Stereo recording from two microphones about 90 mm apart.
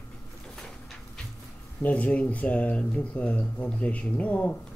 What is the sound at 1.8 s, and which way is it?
Speech, 15° left (ahead or behind).